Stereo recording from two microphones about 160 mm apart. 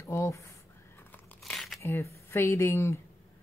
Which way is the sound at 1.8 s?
15° left (ahead or behind).